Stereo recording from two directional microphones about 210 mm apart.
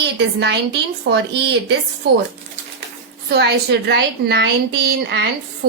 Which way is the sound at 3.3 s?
50° right (ahead or behind).